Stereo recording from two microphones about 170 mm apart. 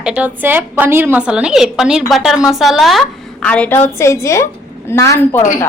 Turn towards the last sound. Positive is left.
turn(degrees=20)  # may be behind; listen again after turning